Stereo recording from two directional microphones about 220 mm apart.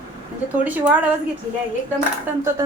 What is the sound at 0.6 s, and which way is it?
Speech, 5° right (ahead or behind).